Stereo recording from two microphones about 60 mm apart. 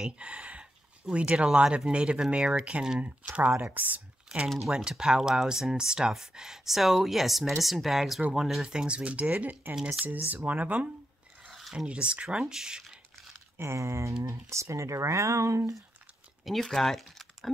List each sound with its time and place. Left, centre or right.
0.0 s speech: centre
4.7 s speech: centre
8.6 s speech: centre
9.8 s speech: centre
10.0 s speech: right
11.4 s rub: centre
11.7 s speech: centre
13.6 s speech: right
16.4 s speech: centre